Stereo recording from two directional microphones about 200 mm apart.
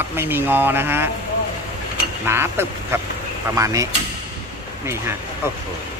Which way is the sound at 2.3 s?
10° right (ahead or behind).